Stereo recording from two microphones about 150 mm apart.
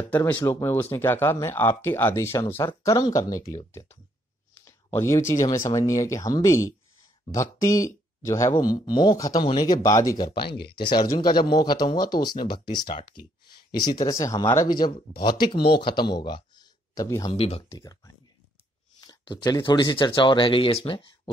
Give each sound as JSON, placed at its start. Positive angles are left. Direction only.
{"t": 0.1, "sound": "speech", "side_deg": 10}
{"t": 15.8, "sound": "speech", "side_deg": 30}
{"t": 17.3, "sound": "speech", "side_deg": 40}
{"t": 17.7, "sound": "speech", "side_deg": 25}